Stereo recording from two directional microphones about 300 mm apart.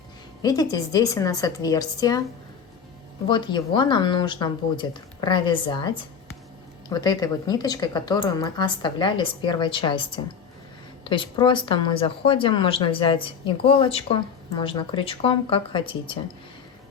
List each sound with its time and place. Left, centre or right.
0.4 s speech: centre
3.2 s speech: centre